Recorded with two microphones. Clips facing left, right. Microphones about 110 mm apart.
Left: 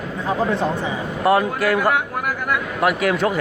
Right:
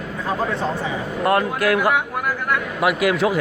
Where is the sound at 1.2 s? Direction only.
Centre (ahead or behind).